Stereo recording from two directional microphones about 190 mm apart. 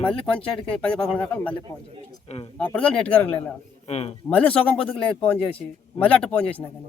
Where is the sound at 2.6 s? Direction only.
5° left (ahead or behind).